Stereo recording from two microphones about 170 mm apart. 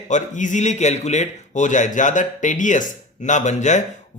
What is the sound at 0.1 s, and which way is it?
A man's voice, 45° left (ahead or behind).